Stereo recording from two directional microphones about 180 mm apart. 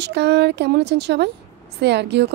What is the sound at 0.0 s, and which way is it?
A woman's voice, 70° right (ahead or behind).